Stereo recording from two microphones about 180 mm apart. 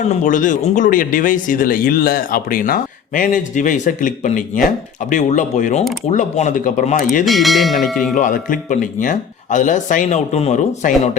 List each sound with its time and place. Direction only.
0.0 s speech: 45° left (ahead or behind)
7.3 s bell: centre (ahead or behind)
8.1 s speech: 45° left (ahead or behind)